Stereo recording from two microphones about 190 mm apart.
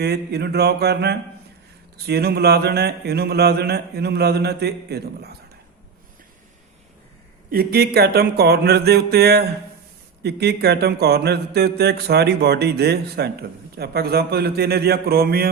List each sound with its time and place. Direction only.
0.0 s speech: 60° right (ahead or behind)
7.5 s speech: 50° right (ahead or behind)